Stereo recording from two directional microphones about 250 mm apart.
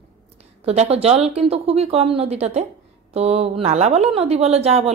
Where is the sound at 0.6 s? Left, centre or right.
Right.